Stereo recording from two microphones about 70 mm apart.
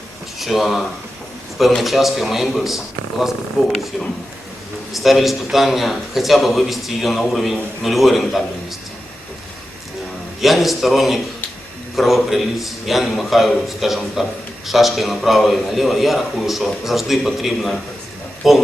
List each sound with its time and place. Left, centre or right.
0.3 s a man's voice: centre
4.9 s a man's voice: centre
10.4 s a man's voice: centre